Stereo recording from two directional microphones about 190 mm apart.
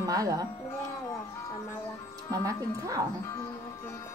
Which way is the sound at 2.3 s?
15° right (ahead or behind).